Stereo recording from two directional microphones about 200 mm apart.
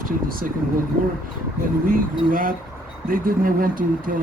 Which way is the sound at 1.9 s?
45° right (ahead or behind).